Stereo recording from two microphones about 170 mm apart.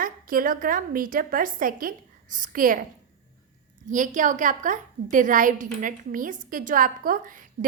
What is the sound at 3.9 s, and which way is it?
A woman's voice, 50° right (ahead or behind).